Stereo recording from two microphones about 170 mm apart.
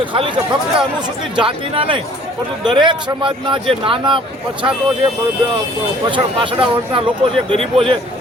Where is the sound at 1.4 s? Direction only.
30° right (ahead or behind).